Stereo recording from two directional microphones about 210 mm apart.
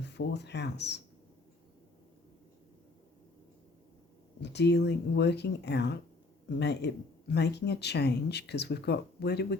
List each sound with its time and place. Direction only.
0.0 s speech: 55° left (ahead or behind)
4.4 s speech: 55° left (ahead or behind)